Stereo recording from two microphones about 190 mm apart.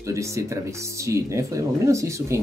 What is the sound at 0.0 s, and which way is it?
Speech, 15° right (ahead or behind).